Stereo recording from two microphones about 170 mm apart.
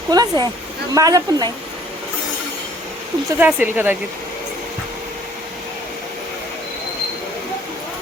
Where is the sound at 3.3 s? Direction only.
10° right (ahead or behind).